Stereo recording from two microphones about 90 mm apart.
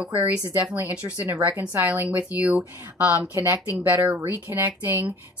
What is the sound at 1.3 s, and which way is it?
A woman's voice, 30° right (ahead or behind).